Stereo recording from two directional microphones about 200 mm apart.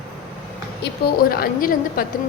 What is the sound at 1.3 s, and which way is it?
Speech, 45° left (ahead or behind).